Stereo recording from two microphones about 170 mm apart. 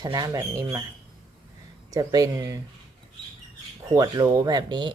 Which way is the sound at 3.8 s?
20° right (ahead or behind).